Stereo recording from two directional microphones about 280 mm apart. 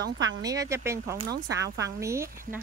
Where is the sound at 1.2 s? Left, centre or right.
Right.